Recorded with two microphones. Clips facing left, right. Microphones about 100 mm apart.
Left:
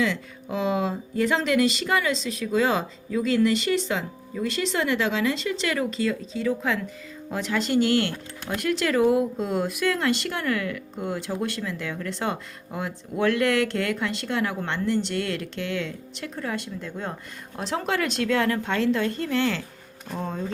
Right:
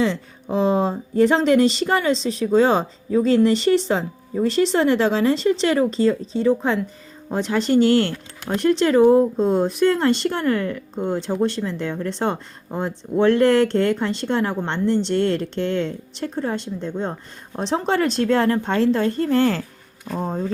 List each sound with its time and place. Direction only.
0.0 s speech: 30° right (ahead or behind)